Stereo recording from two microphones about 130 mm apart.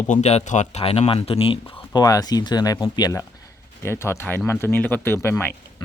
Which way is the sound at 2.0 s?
25° left (ahead or behind).